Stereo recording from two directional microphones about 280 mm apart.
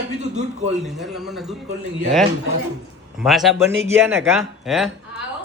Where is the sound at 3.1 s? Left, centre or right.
Centre.